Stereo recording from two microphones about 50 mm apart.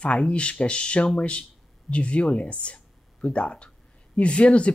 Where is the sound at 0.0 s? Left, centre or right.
Left.